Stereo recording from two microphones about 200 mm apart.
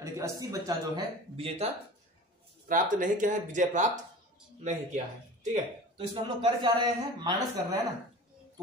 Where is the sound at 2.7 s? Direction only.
40° right (ahead or behind); by 7.8 s 20° right (ahead or behind).